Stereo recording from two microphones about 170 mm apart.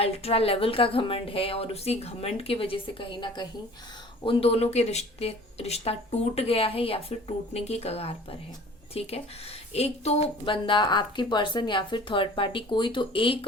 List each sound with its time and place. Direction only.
0.0 s a woman's voice: 35° left (ahead or behind)